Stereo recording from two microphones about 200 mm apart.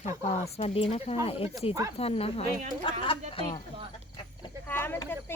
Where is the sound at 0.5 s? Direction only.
30° left (ahead or behind).